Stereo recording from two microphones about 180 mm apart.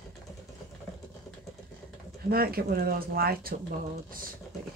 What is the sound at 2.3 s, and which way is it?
Speech, 55° right (ahead or behind).